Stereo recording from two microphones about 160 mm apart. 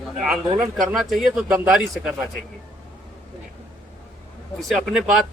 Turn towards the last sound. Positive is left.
turn(degrees=0)  # may be behind; listen again after turning